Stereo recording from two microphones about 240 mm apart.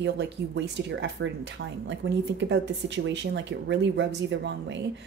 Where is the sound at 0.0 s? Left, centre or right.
Right.